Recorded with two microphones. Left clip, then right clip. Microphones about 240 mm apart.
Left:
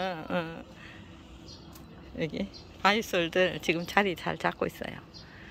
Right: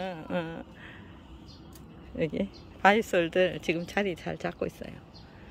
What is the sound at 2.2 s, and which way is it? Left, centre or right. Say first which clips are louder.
Speech: right 3 dB; centre.